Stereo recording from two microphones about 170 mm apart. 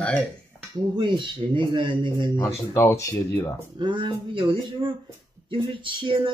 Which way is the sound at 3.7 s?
30° right (ahead or behind).